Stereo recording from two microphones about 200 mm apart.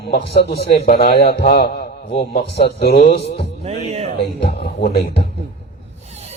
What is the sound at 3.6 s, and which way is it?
Music, 30° right (ahead or behind).